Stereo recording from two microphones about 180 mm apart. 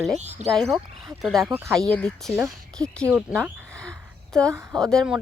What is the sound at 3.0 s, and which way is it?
Speech, 10° right (ahead or behind).